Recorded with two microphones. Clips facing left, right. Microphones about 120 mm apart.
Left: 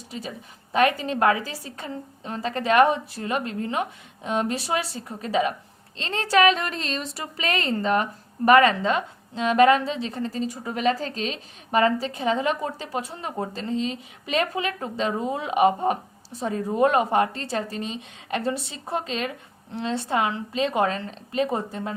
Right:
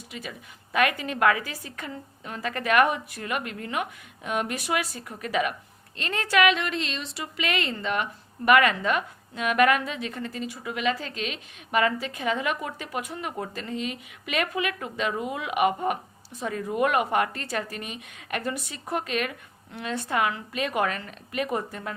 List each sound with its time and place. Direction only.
0.1 s a woman's voice: 30° left (ahead or behind)